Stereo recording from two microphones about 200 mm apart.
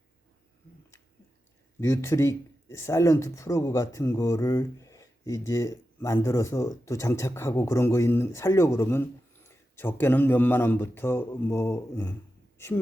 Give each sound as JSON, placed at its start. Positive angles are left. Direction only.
{"t": 1.8, "sound": "a woman's voice", "side_deg": 10}